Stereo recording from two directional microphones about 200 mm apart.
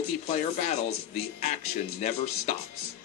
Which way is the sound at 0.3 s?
35° left (ahead or behind).